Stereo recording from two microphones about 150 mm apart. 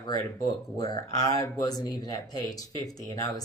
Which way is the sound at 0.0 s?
25° left (ahead or behind).